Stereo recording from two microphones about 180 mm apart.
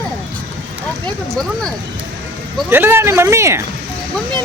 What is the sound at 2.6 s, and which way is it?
Speech, 10° right (ahead or behind).